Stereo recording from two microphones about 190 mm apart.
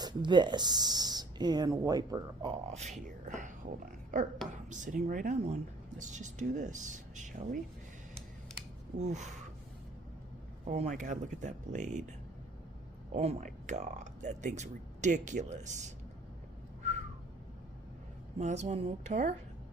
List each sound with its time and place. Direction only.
0.0 s speech: 25° right (ahead or behind)
2.7 s speech: 35° right (ahead or behind)
9.0 s speech: 40° right (ahead or behind)
10.7 s speech: 40° right (ahead or behind)
13.1 s speech: 35° right (ahead or behind)
18.3 s speech: 35° right (ahead or behind)